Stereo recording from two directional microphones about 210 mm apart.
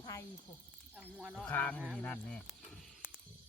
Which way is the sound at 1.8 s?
5° right (ahead or behind).